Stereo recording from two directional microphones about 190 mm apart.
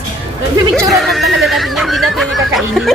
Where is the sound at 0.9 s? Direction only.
Centre (ahead or behind).